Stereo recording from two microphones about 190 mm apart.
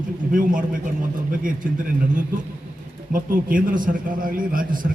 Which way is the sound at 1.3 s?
45° right (ahead or behind).